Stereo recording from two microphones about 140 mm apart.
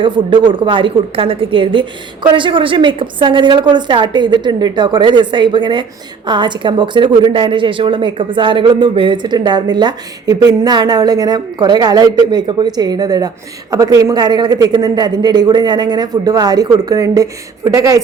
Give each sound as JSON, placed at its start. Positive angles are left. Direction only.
{"t": 0.0, "sound": "a woman's voice", "side_deg": -35}